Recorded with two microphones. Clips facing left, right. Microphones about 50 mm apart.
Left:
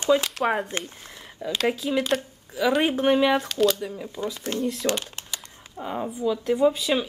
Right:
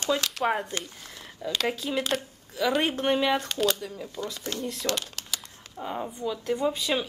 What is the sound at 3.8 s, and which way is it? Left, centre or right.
Speech, centre.